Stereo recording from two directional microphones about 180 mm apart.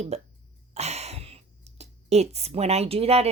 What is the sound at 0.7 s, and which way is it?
Cough, 35° right (ahead or behind).